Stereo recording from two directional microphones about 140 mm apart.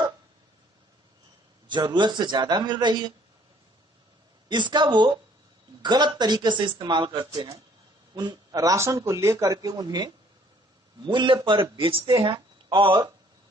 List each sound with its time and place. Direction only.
1.7 s speech: 35° right (ahead or behind)
4.5 s a man's voice: 35° right (ahead or behind)